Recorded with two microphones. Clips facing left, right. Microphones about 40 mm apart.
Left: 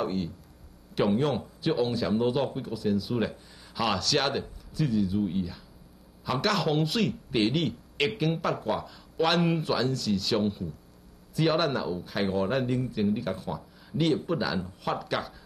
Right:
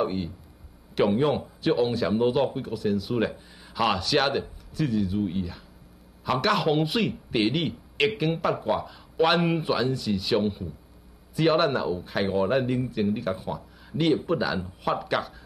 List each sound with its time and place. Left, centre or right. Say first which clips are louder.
0.0 s speech: right 3 dB; centre
1.9 s speech: right 3 dB; centre